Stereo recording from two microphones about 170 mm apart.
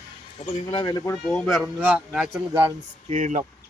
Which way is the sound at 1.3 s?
Centre (ahead or behind).